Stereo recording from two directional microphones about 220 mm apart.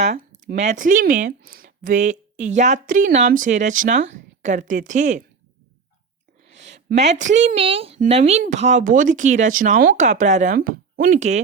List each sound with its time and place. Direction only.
0.0 s a woman's voice: 35° right (ahead or behind)
6.5 s a woman's voice: 35° right (ahead or behind)